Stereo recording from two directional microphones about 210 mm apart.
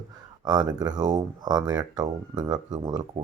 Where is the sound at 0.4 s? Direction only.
20° right (ahead or behind).